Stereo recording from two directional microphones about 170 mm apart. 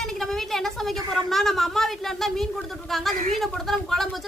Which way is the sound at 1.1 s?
Centre (ahead or behind).